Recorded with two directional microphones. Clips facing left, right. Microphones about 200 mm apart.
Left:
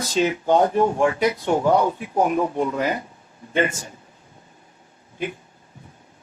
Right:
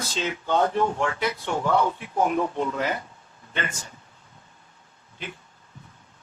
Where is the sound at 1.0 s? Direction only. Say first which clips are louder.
Left 7 dB; 15° left (ahead or behind).